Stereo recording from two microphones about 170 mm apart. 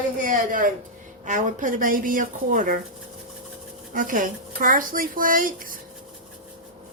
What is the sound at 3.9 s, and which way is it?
Speech, 55° right (ahead or behind).